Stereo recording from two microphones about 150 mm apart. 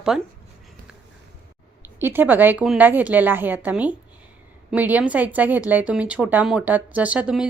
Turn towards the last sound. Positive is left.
turn(degrees=-10)  # may be behind; listen again after turning